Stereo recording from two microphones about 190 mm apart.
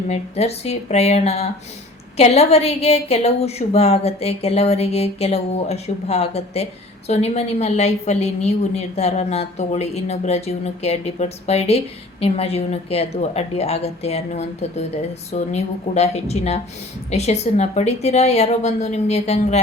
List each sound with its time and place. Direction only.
0.1 s a woman's voice: 35° left (ahead or behind)